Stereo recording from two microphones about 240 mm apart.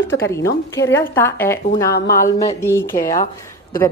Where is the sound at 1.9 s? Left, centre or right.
Left.